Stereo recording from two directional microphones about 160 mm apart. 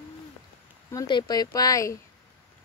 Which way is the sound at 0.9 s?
25° left (ahead or behind).